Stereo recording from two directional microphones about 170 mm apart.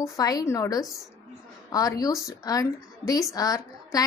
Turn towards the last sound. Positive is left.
turn(degrees=20)  # may be behind; listen again after turning